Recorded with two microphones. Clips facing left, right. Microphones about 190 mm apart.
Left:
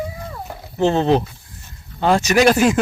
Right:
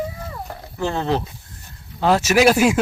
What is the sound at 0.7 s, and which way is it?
Speech, 20° left (ahead or behind).